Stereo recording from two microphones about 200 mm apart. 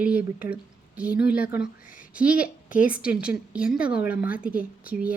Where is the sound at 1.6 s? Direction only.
45° left (ahead or behind).